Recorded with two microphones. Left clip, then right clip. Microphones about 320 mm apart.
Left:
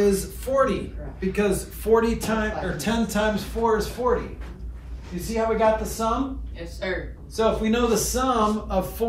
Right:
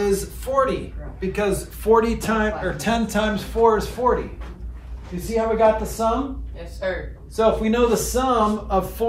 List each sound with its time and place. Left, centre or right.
0.0 s speech: centre; by 4.1 s right
5.2 s speech: right
7.3 s speech: right